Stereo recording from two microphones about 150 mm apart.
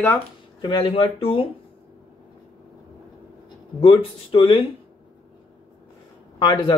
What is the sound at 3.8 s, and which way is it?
Speech, 35° left (ahead or behind).